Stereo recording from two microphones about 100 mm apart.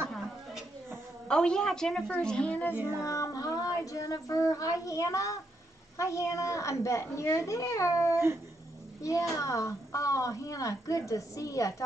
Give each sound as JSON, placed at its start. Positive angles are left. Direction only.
{"t": 0.8, "sound": "a woman's voice", "side_deg": 10}
{"t": 3.0, "sound": "a woman's voice", "side_deg": 30}